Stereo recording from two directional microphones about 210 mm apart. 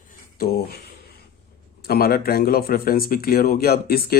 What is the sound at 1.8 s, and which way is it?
Speech, 50° left (ahead or behind).